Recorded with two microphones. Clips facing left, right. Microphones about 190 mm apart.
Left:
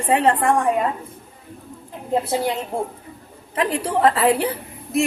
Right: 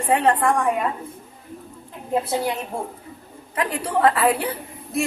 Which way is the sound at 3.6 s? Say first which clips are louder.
Left 2 dB; 25° left (ahead or behind).